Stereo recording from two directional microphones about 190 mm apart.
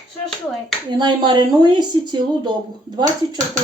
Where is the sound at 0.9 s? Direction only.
25° right (ahead or behind).